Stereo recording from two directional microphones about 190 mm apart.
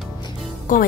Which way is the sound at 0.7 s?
45° left (ahead or behind).